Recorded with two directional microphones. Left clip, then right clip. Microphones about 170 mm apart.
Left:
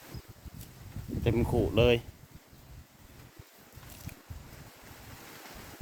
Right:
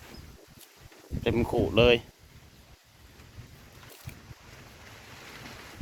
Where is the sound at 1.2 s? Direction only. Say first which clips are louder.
Right 3 dB; centre (ahead or behind).